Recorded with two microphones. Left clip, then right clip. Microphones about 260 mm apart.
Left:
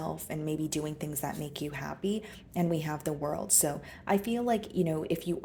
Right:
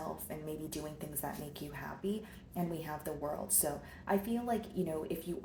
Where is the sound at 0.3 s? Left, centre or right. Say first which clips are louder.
Left 8 dB; left.